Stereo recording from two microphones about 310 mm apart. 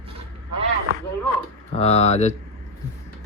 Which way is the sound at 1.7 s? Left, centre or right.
Centre.